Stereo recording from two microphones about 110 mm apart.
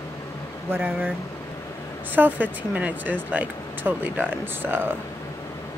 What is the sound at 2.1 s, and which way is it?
Speech, 15° right (ahead or behind).